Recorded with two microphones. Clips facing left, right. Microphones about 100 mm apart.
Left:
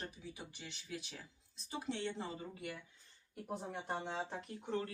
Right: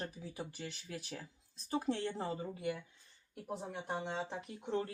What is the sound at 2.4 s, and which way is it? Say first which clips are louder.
Speech: right 7 dB; 25° right (ahead or behind).